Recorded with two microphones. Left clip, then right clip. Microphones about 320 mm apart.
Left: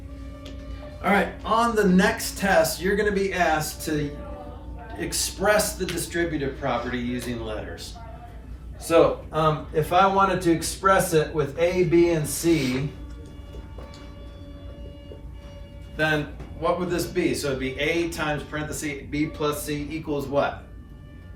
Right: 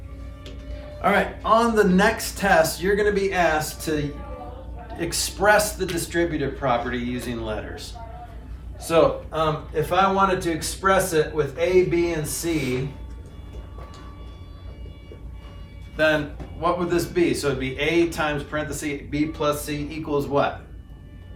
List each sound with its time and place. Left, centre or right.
1.0 s speech: centre
4.9 s a man's voice: centre
16.0 s speech: centre